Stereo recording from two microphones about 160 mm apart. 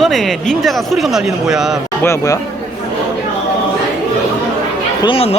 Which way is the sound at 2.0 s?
20° left (ahead or behind).